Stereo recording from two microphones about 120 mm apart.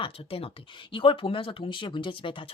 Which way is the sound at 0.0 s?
50° left (ahead or behind).